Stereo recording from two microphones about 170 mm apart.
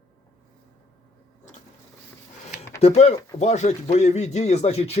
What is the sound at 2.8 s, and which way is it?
Speech, 40° left (ahead or behind).